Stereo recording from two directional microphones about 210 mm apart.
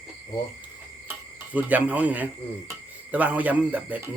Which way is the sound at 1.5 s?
5° right (ahead or behind).